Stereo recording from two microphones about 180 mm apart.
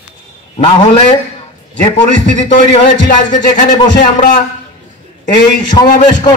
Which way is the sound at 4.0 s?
45° left (ahead or behind).